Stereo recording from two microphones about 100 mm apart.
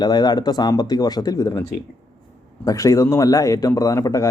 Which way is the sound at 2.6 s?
35° left (ahead or behind).